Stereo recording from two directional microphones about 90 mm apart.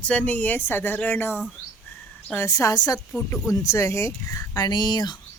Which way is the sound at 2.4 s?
35° left (ahead or behind).